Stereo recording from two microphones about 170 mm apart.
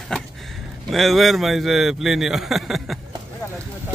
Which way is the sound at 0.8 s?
Centre (ahead or behind).